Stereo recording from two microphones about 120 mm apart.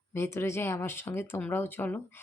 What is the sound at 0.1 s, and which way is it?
Speech, 20° left (ahead or behind).